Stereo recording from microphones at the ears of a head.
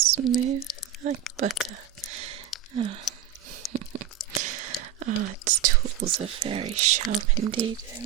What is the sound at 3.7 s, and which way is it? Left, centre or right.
Crunch, right.